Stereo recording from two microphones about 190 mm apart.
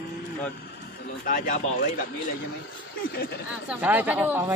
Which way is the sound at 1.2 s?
45° left (ahead or behind).